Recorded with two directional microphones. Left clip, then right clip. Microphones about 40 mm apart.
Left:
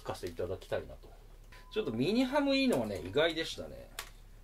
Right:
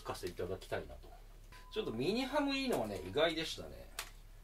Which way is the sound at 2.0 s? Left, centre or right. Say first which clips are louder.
Left 5 dB; left.